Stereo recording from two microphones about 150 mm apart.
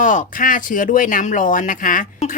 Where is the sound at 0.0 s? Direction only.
60° left (ahead or behind).